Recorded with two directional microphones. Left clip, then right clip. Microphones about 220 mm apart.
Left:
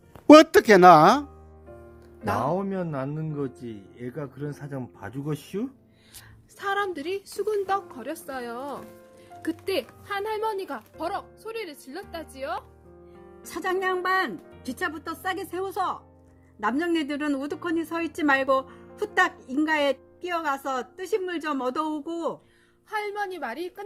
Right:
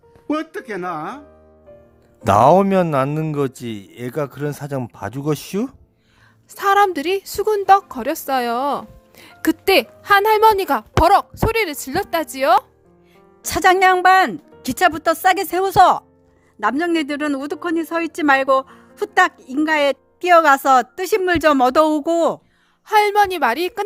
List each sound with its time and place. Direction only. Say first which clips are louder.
0.3 s speech: left 12 dB; 50° left (ahead or behind)
2.2 s a woman's voice: right 15 dB; 55° right (ahead or behind)
6.6 s a woman's voice: right 13 dB; 35° right (ahead or behind)